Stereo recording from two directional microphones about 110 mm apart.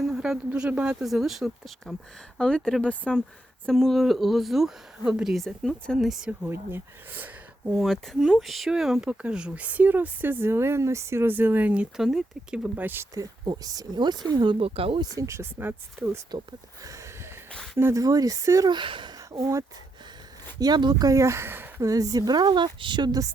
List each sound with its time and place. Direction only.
0.0 s speech: 5° right (ahead or behind)
6.4 s speech: 20° right (ahead or behind)
7.7 s speech: centre (ahead or behind); by 13.1 s 20° right (ahead or behind)
13.1 s speech: 35° right (ahead or behind)
14.6 s speech: 60° right (ahead or behind)
15.1 s speech: 30° right (ahead or behind)
16.3 s speech: 35° right (ahead or behind)
18.0 s speech: 35° right (ahead or behind)
18.7 s speech: 45° right (ahead or behind)
19.3 s speech: 30° right (ahead or behind)
20.6 s speech: 40° right (ahead or behind)
21.1 s speech: 25° right (ahead or behind)
21.8 s speech: 30° right (ahead or behind)